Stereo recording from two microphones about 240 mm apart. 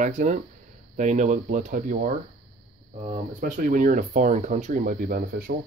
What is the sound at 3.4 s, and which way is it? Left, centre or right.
Speech, right.